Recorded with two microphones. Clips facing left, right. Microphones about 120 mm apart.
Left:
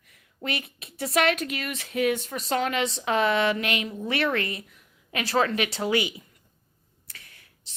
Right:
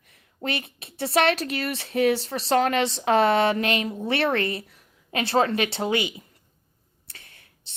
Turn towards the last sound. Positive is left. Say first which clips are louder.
# right 1 dB
turn(degrees=-25)  # may be behind; listen again after turning